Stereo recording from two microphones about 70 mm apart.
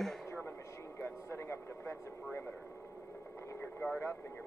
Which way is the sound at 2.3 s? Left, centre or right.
Left.